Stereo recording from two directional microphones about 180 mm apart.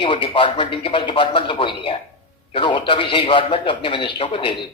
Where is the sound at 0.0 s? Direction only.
30° left (ahead or behind).